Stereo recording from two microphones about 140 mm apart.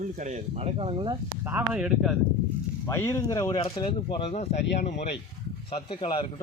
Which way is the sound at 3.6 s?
35° left (ahead or behind).